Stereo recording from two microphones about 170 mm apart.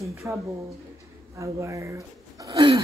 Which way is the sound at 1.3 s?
15° right (ahead or behind).